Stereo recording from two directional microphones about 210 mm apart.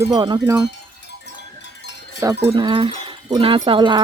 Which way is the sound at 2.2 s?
20° right (ahead or behind).